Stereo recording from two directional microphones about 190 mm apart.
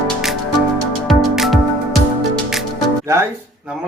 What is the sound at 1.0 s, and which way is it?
Music, centre (ahead or behind).